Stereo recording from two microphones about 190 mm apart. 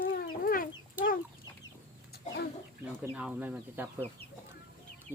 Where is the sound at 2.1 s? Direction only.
55° left (ahead or behind).